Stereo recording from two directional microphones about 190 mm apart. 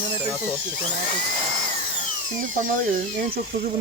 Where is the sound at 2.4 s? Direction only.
45° right (ahead or behind).